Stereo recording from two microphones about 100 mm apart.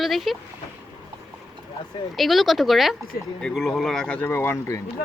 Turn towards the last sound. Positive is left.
turn(degrees=30)  # may be behind; listen again after turning